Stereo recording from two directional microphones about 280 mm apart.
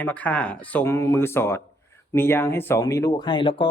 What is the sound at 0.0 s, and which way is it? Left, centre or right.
Speech, centre.